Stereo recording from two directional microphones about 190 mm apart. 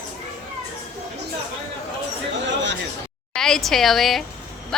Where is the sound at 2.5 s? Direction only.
70° right (ahead or behind).